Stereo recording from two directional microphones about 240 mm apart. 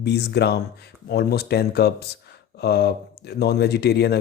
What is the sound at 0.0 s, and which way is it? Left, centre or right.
Speech, left.